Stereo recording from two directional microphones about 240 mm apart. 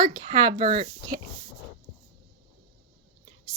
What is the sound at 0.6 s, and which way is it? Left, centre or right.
Speech, right.